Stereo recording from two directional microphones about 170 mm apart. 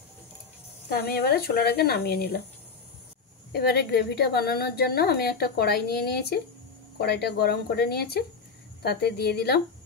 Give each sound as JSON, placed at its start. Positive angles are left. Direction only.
{"t": 0.8, "sound": "a woman's voice", "side_deg": 65}
{"t": 3.5, "sound": "a woman's voice", "side_deg": 70}